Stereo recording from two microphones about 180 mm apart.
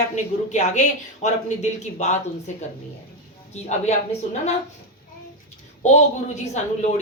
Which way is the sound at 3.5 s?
40° left (ahead or behind).